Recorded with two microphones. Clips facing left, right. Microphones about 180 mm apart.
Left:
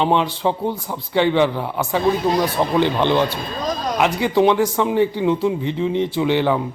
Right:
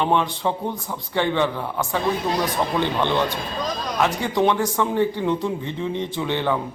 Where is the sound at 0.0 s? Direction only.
15° left (ahead or behind).